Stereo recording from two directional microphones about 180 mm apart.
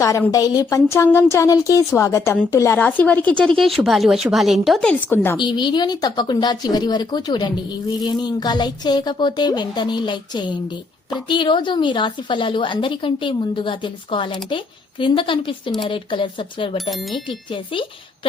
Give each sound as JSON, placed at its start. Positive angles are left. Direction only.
{"t": 0.0, "sound": "speech", "side_deg": 15}
{"t": 5.4, "sound": "a woman's voice", "side_deg": 25}
{"t": 16.9, "sound": "speech", "side_deg": 0}
{"t": 17.2, "sound": "a woman's voice", "side_deg": 30}